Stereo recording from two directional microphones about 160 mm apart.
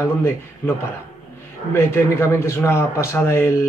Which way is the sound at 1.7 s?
15° left (ahead or behind).